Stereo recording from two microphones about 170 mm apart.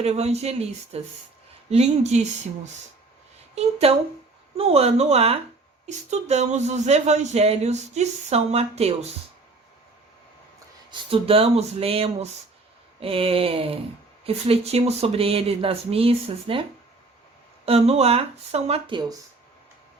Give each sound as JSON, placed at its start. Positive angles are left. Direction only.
{"t": 0.0, "sound": "speech", "side_deg": -40}
{"t": 3.5, "sound": "a woman's voice", "side_deg": -35}
{"t": 11.1, "sound": "speech", "side_deg": -35}
{"t": 17.7, "sound": "speech", "side_deg": -40}